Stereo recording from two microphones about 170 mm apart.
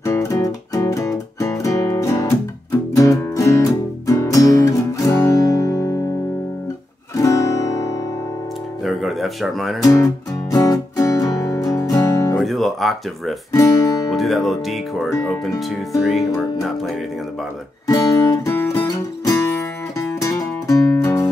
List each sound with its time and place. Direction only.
0.0 s music: 15° left (ahead or behind)
7.2 s music: 20° left (ahead or behind)
8.8 s a sound: centre (ahead or behind)
9.8 s speech: 20° left (ahead or behind)
10.5 s music: 20° left (ahead or behind)
12.4 s music: centre (ahead or behind)
13.6 s speech: 20° left (ahead or behind)
14.1 s speech: centre (ahead or behind)
17.8 s music: 20° left (ahead or behind)